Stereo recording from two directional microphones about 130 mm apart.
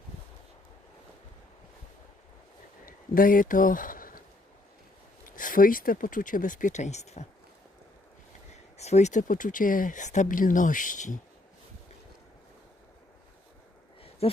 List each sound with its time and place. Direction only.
2.8 s speech: 90° left
5.2 s speech: 90° left; by 7.3 s 60° left (ahead or behind)
8.8 s speech: 60° left (ahead or behind); by 11.2 s 80° left
14.2 s speech: 50° left (ahead or behind)